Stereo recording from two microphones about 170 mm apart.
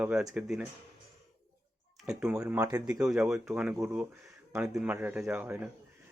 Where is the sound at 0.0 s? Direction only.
5° right (ahead or behind).